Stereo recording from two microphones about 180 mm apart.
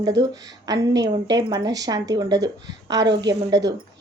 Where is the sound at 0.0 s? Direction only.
20° right (ahead or behind).